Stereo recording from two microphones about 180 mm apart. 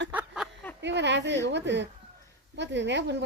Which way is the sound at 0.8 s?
75° right (ahead or behind).